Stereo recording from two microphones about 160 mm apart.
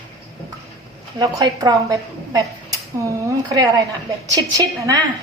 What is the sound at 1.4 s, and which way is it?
A woman's voice, 25° right (ahead or behind).